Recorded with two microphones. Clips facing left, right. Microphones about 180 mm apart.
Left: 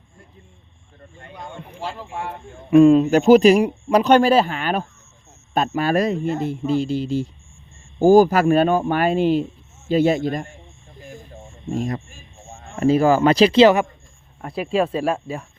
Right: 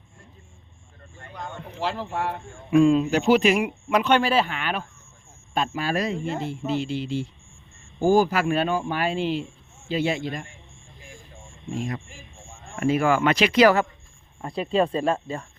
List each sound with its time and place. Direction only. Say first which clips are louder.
1.1 s speech: left 2 dB; 20° left (ahead or behind)
1.4 s speech: even; 10° left (ahead or behind)
2.6 s speech: left 6 dB; 45° left (ahead or behind)
11.7 s speech: left 5 dB; 40° left (ahead or behind)
12.7 s speech: left 5 dB; 30° left (ahead or behind)
14.4 s speech: left 2 dB; 5° left (ahead or behind)